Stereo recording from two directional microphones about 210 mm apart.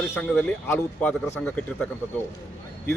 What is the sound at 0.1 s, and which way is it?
Speech, 5° left (ahead or behind).